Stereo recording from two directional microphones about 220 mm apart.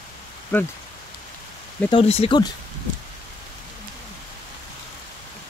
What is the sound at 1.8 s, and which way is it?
Speech, 25° left (ahead or behind).